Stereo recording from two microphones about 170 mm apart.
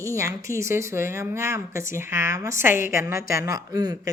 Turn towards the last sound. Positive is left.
turn(degrees=-20)  # may be behind; listen again after turning